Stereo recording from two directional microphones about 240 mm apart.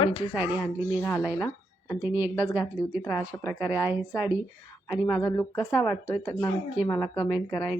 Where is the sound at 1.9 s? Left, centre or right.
Centre.